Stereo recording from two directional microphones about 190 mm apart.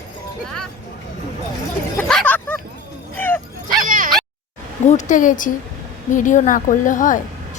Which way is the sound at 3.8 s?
45° right (ahead or behind).